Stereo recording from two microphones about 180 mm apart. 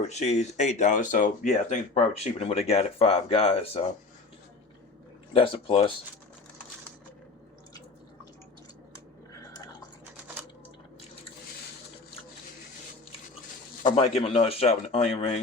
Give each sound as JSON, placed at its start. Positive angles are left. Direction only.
{"t": 0.0, "sound": "speech", "side_deg": 40}
{"t": 5.3, "sound": "speech", "side_deg": 30}
{"t": 13.8, "sound": "speech", "side_deg": 30}